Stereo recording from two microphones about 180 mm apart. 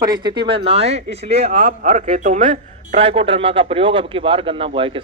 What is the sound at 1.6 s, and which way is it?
A man's voice, 50° right (ahead or behind).